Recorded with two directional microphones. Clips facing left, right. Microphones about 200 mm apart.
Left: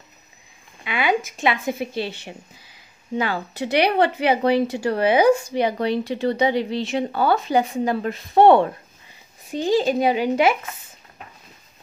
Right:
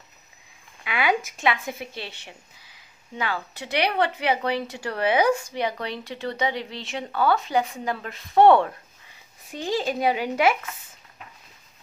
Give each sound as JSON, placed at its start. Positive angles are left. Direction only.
{"t": 0.8, "sound": "a woman's voice", "side_deg": 25}
{"t": 3.2, "sound": "speech", "side_deg": 35}